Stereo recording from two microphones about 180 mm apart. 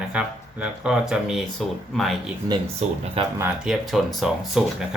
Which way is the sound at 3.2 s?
30° right (ahead or behind).